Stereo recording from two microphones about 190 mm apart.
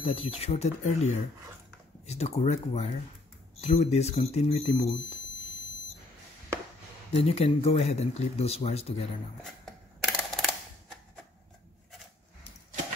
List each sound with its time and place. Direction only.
0.0 s speech: 30° left (ahead or behind)
7.2 s speech: 30° left (ahead or behind)
9.4 s a sound: centre (ahead or behind)